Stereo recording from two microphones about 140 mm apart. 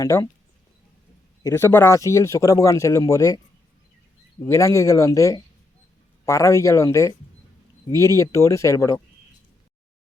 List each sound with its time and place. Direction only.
0.0 s speech: 25° left (ahead or behind)
1.5 s speech: 20° left (ahead or behind)
4.4 s speech: 20° left (ahead or behind)